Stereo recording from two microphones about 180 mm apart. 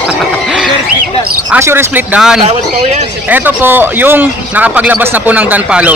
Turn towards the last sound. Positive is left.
turn(degrees=-5)  # may be behind; listen again after turning